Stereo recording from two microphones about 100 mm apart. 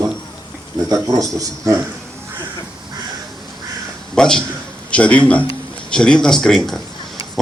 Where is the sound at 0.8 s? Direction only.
35° right (ahead or behind).